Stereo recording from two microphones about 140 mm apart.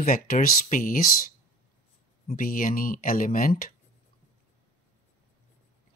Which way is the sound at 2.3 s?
75° left (ahead or behind).